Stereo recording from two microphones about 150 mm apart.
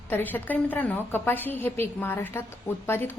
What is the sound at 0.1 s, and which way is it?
A woman's voice, 15° left (ahead or behind).